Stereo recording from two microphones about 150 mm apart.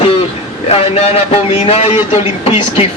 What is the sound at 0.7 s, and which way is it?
A man's voice, 40° left (ahead or behind).